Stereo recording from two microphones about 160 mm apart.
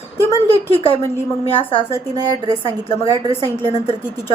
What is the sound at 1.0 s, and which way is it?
Speech, 15° left (ahead or behind).